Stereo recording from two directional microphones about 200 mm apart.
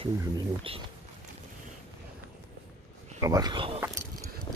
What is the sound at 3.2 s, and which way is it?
Speech, 20° right (ahead or behind).